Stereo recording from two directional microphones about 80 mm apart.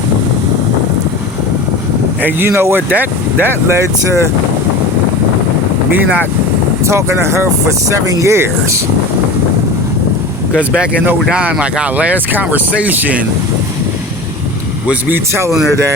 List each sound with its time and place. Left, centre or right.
2.2 s speech: right
3.7 s speech: right
6.8 s speech: right
10.5 s speech: centre
15.1 s speech: right